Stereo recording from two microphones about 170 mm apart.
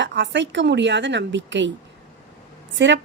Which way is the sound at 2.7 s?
90° right.